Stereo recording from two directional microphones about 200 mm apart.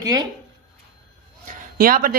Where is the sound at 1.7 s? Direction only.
45° right (ahead or behind).